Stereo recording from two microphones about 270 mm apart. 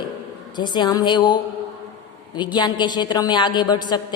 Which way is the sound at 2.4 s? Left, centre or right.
Centre.